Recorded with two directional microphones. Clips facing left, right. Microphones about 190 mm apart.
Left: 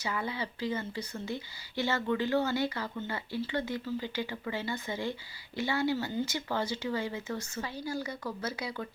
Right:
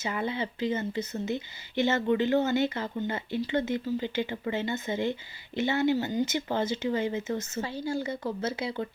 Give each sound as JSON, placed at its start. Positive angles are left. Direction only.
{"t": 0.0, "sound": "speech", "side_deg": -25}